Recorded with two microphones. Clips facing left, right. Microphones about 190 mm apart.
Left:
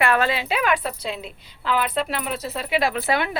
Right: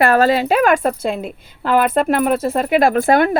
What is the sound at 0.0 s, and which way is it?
A woman's voice, 40° right (ahead or behind).